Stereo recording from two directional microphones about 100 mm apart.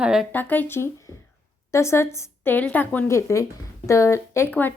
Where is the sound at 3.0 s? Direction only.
30° left (ahead or behind).